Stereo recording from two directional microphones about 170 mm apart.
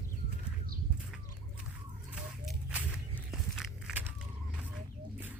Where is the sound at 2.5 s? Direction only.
10° right (ahead or behind).